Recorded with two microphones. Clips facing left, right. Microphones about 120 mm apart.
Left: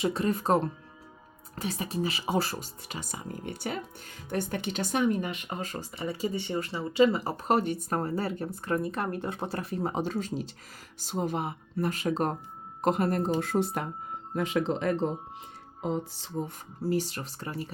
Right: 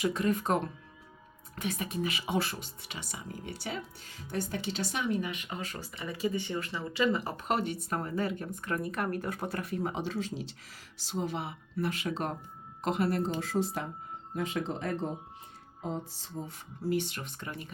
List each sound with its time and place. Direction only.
0.0 s speech: 30° left (ahead or behind); by 13.8 s 60° left (ahead or behind)
14.3 s speech: 85° left
15.8 s music: 85° left
16.8 s speech: 35° left (ahead or behind)